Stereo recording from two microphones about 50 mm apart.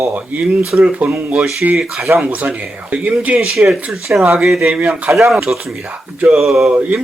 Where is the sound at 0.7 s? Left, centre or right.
Right.